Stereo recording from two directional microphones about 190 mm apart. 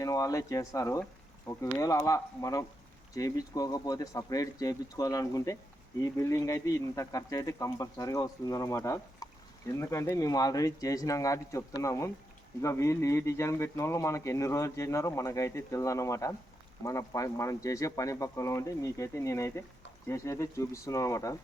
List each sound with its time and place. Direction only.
0.0 s speech: 15° left (ahead or behind)